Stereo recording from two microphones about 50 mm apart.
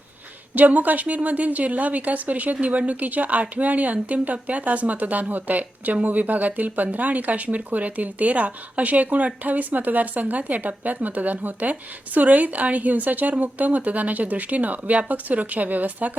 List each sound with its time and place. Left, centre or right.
0.5 s speech: right